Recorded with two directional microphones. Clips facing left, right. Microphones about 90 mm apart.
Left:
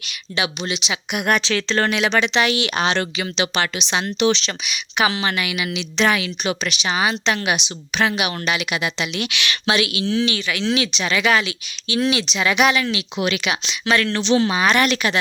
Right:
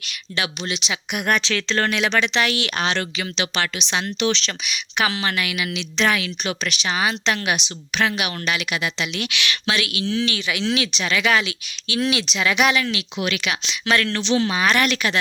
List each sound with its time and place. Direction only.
0.0 s a woman's voice: 10° left (ahead or behind)
10.3 s a woman's voice: 10° right (ahead or behind)
13.1 s speech: 20° left (ahead or behind)
13.7 s a woman's voice: 5° left (ahead or behind)
14.3 s speech: 30° left (ahead or behind)
14.9 s speech: 10° left (ahead or behind)